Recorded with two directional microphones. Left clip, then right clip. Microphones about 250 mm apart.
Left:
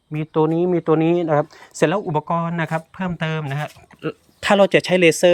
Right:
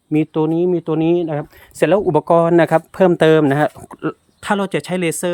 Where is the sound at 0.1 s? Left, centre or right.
Centre.